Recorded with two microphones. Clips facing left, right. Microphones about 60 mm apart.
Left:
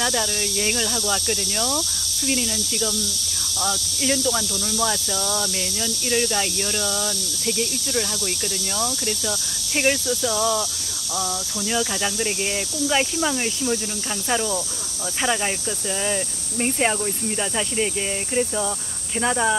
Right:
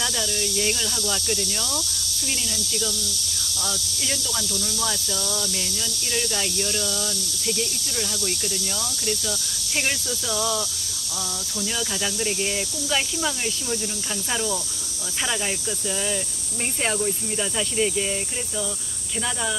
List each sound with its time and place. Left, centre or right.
0.0 s speech: left
9.8 s speech: centre
11.6 s speech: centre
16.6 s speech: centre